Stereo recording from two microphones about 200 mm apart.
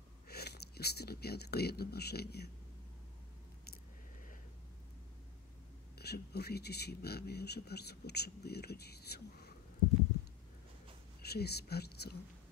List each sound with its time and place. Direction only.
0.3 s speech: 55° left (ahead or behind)
5.9 s speech: 55° left (ahead or behind)
11.2 s speech: 55° left (ahead or behind)